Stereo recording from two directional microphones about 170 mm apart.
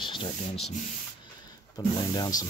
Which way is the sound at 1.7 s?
25° left (ahead or behind).